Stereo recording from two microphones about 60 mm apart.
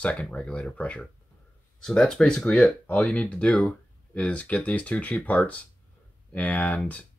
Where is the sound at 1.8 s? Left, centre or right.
Centre.